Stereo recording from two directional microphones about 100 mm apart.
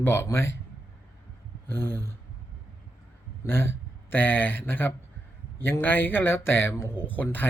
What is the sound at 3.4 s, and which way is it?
Speech, 25° left (ahead or behind).